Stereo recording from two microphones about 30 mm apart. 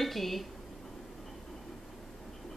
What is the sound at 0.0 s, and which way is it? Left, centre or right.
Speech, centre.